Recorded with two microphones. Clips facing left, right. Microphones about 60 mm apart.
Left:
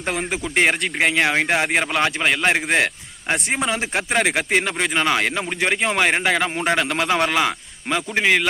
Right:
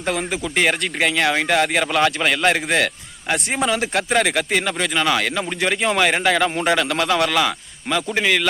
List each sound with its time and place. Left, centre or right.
0.0 s a man's voice: left
3.3 s speech: centre
3.7 s a man's voice: left